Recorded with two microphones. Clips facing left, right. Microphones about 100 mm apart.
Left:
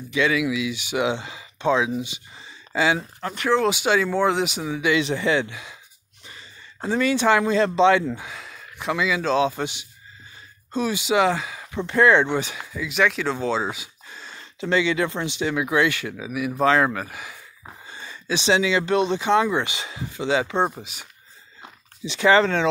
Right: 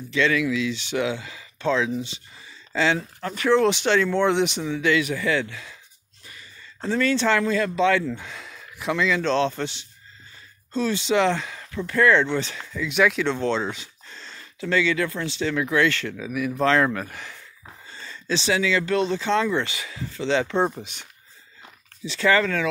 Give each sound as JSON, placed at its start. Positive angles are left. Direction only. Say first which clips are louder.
{"t": 0.1, "sound": "speech", "louder": "even", "side_deg": 10}
{"t": 5.0, "sound": "speech", "louder": "left 2 dB", "side_deg": 25}
{"t": 6.8, "sound": "speech", "louder": "left 1 dB", "side_deg": 15}
{"t": 8.2, "sound": "speech", "louder": "left 1 dB", "side_deg": 5}
{"t": 11.7, "sound": "speech", "louder": "left 2 dB", "side_deg": 20}
{"t": 12.9, "sound": "speech", "louder": "right 1 dB", "side_deg": 0}
{"t": 22.0, "sound": "speech", "louder": "left 3 dB", "side_deg": 20}